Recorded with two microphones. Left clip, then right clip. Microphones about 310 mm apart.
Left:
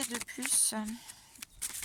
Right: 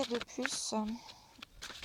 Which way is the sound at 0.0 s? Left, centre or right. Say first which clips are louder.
Right 2 dB; centre.